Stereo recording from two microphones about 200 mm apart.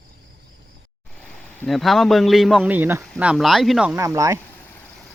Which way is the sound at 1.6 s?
Centre (ahead or behind).